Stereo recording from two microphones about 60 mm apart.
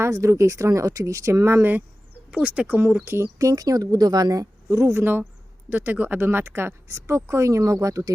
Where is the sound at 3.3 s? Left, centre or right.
Right.